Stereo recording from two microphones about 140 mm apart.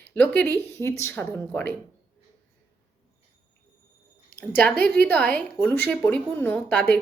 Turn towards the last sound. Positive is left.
turn(degrees=10)  # may be behind; listen again after turning